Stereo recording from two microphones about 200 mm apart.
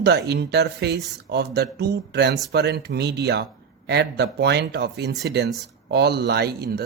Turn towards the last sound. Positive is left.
turn(degrees=-50)  # may be behind; listen again after turning